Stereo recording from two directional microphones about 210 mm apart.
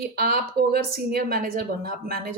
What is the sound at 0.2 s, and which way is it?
Speech, 45° right (ahead or behind).